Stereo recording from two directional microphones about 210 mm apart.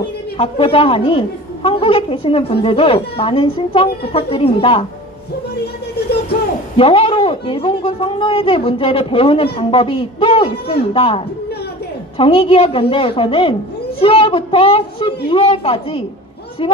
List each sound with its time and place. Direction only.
0.4 s a woman's voice: 25° left (ahead or behind)
6.8 s a woman's voice: 25° left (ahead or behind)